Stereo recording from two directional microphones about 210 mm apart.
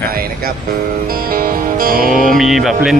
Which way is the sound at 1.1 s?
45° right (ahead or behind).